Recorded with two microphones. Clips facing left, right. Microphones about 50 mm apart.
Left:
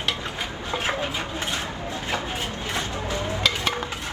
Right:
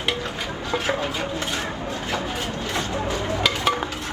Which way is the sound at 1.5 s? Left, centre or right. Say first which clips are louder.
Right 2 dB; right.